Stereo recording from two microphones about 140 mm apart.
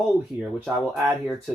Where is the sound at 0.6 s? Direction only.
Centre (ahead or behind).